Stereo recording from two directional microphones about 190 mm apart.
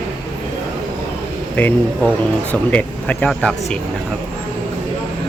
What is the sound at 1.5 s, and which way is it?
Speech, 10° left (ahead or behind).